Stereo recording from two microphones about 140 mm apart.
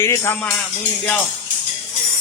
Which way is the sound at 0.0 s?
20° left (ahead or behind).